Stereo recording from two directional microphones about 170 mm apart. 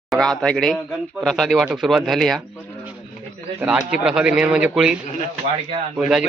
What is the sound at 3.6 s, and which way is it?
A man's voice, 5° right (ahead or behind).